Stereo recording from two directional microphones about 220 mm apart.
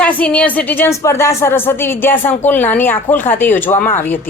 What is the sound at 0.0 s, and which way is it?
A woman's voice, 5° left (ahead or behind).